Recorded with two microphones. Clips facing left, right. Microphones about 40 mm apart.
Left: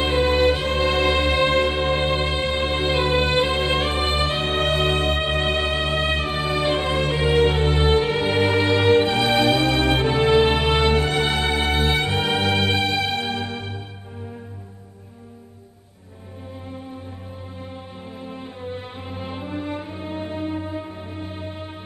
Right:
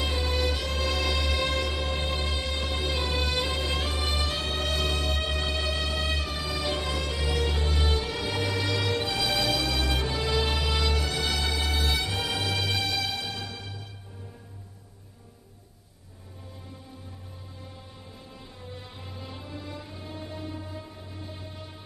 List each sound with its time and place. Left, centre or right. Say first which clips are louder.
0.0 s music: left 11 dB; left
18.2 s music: left 14 dB; left